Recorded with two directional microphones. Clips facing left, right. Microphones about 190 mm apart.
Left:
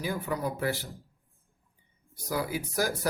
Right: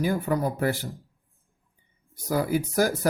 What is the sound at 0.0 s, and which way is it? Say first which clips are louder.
Speech: right 6 dB; 45° right (ahead or behind).